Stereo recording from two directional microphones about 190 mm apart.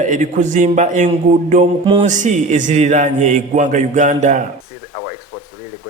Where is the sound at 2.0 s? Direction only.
40° right (ahead or behind).